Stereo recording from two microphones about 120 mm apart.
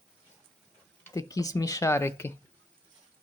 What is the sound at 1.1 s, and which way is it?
Speech, 30° left (ahead or behind).